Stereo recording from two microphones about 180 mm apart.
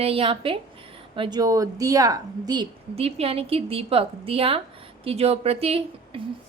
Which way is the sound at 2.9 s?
35° right (ahead or behind).